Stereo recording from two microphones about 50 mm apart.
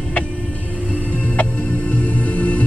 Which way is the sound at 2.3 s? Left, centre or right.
Left.